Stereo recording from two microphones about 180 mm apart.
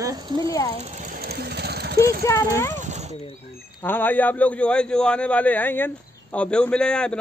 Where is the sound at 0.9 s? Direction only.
50° right (ahead or behind).